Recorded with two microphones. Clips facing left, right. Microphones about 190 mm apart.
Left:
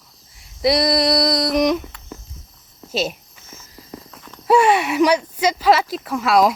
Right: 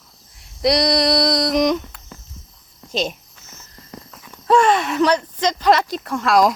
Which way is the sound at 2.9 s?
5° left (ahead or behind).